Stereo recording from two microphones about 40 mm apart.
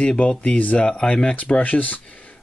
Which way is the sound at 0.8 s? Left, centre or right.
Left.